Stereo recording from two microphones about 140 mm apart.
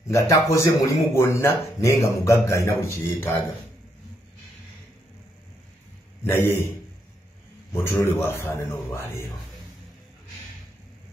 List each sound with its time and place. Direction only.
0.1 s speech: 20° left (ahead or behind)
6.2 s a man's voice: 15° left (ahead or behind)
7.7 s a man's voice: 15° left (ahead or behind)